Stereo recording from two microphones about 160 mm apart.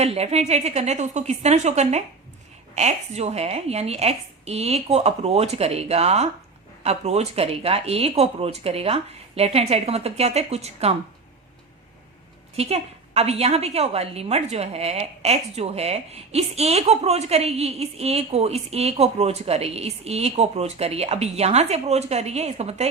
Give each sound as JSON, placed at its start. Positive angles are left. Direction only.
{"t": 0.0, "sound": "a woman's voice", "side_deg": -40}
{"t": 12.5, "sound": "a woman's voice", "side_deg": -40}